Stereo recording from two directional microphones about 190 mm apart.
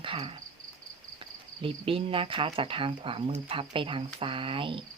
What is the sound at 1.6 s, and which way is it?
Cricket, 30° right (ahead or behind).